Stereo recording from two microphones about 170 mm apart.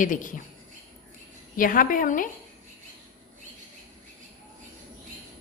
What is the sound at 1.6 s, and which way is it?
Speech, 55° left (ahead or behind).